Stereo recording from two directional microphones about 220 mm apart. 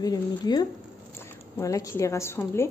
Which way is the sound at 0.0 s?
15° left (ahead or behind).